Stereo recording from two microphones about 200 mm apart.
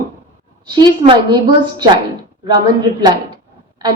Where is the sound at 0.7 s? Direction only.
20° right (ahead or behind).